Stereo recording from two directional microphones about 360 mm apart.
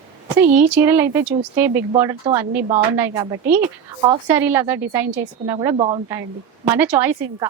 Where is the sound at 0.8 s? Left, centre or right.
Centre.